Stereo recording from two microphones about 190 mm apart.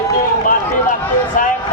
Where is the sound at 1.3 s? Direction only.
45° left (ahead or behind).